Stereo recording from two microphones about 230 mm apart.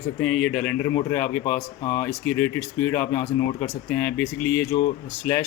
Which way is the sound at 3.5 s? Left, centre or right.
Left.